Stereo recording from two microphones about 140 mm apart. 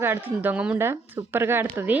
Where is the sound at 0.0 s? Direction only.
15° right (ahead or behind).